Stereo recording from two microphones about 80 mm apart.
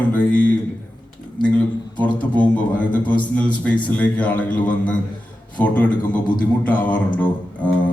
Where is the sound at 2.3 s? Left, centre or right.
Centre.